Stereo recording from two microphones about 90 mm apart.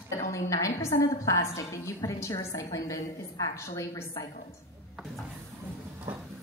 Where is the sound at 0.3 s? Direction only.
35° left (ahead or behind).